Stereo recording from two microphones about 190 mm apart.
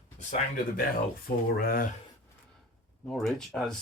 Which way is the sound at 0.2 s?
40° left (ahead or behind).